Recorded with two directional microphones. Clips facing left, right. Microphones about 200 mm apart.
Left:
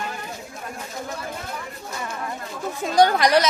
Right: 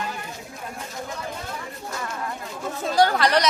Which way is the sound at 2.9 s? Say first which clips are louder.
Left 3 dB; 15° left (ahead or behind).